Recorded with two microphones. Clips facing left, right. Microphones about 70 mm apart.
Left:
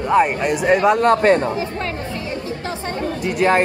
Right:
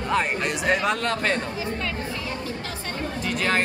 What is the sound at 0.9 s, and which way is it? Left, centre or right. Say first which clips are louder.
Speech: left 11 dB; left.